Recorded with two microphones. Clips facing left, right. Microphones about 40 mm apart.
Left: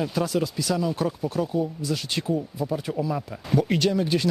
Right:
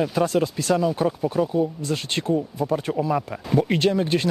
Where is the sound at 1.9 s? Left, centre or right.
Right.